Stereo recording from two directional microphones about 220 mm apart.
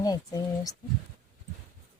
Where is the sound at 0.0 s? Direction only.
15° left (ahead or behind).